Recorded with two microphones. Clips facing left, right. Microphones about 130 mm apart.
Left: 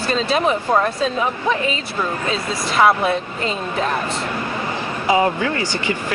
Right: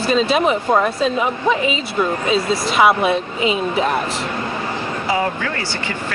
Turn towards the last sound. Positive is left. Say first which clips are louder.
# left 3 dB
turn(degrees=20)  # may be behind; listen again after turning